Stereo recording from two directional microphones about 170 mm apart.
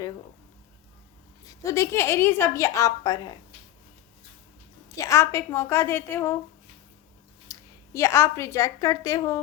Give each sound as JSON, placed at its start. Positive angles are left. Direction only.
{"t": 1.5, "sound": "a woman's voice", "side_deg": 20}
{"t": 4.9, "sound": "a woman's voice", "side_deg": 15}
{"t": 7.5, "sound": "a sound", "side_deg": 20}
{"t": 7.9, "sound": "a woman's voice", "side_deg": 15}